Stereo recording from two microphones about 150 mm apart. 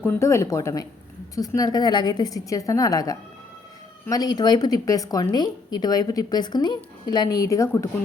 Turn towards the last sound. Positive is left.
turn(degrees=20)  # may be behind; listen again after turning